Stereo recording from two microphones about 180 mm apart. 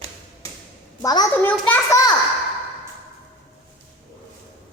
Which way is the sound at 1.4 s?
10° left (ahead or behind).